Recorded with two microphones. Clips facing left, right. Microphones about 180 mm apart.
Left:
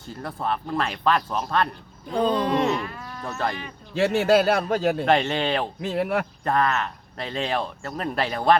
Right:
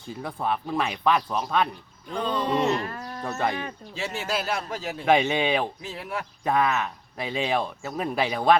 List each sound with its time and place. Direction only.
0.2 s speech: centre (ahead or behind)
2.8 s speech: 40° right (ahead or behind)
3.2 s speech: centre (ahead or behind)
3.9 s a man's voice: 60° left (ahead or behind)
5.0 s speech: 5° right (ahead or behind)
5.8 s a man's voice: 65° left (ahead or behind)
6.4 s speech: 5° right (ahead or behind)